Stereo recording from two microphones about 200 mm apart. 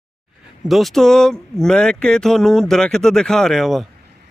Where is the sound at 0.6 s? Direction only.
Centre (ahead or behind).